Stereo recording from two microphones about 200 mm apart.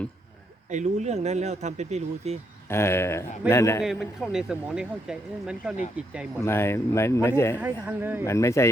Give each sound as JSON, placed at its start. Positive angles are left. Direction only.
{"t": 0.7, "sound": "speech", "side_deg": -35}
{"t": 2.6, "sound": "speech", "side_deg": 10}
{"t": 3.9, "sound": "speech", "side_deg": 0}
{"t": 6.4, "sound": "speech", "side_deg": 10}
{"t": 7.6, "sound": "speech", "side_deg": -10}
{"t": 8.2, "sound": "speech", "side_deg": 15}